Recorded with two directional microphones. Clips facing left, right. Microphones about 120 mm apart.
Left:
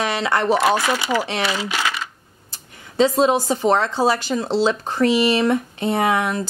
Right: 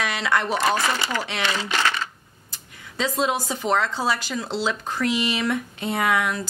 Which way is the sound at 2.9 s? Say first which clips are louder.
Left 8 dB; 30° left (ahead or behind).